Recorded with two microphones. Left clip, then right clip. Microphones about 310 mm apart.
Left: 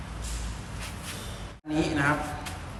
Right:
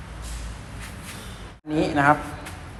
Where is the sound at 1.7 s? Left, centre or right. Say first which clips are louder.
Right 7 dB; centre.